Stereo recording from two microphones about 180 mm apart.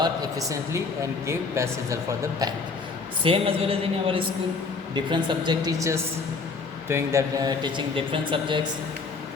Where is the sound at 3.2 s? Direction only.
30° right (ahead or behind).